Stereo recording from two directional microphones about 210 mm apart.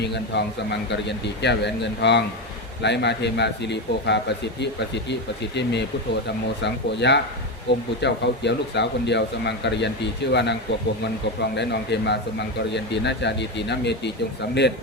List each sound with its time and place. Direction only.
0.0 s a man's voice: 55° left (ahead or behind)